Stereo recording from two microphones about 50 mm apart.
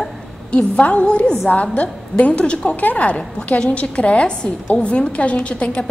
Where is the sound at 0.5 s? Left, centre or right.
Left.